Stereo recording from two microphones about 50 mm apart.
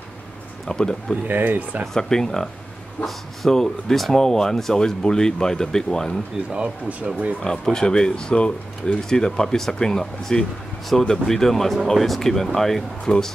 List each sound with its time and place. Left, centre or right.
0.7 s speech: centre
1.2 s speech: right
2.0 s speech: centre
6.5 s speech: right
7.6 s speech: centre